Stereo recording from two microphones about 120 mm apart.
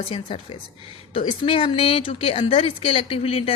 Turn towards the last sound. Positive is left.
turn(degrees=50)  # may be behind; listen again after turning